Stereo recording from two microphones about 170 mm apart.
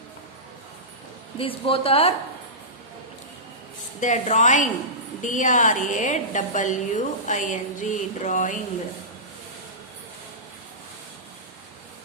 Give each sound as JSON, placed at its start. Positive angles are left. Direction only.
{"t": 1.4, "sound": "a woman's voice", "side_deg": 35}
{"t": 4.0, "sound": "a woman's voice", "side_deg": 45}